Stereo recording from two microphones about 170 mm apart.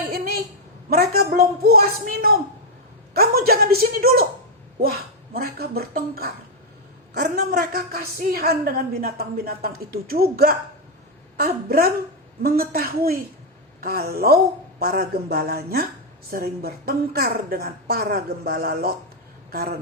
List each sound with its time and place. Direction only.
0.9 s a woman's voice: 65° right (ahead or behind)